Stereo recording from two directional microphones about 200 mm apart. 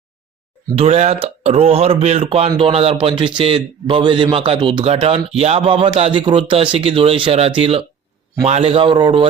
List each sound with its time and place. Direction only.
0.8 s a man's voice: 35° right (ahead or behind)